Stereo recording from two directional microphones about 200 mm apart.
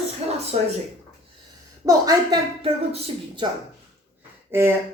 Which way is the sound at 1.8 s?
15° right (ahead or behind).